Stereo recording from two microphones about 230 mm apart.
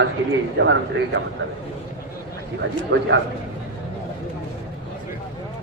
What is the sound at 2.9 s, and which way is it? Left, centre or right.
Speech, right.